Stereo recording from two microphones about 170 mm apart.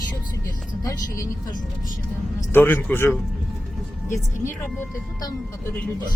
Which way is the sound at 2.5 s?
10° left (ahead or behind).